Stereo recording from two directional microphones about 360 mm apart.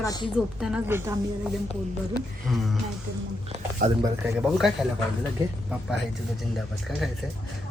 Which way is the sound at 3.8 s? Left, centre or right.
Right.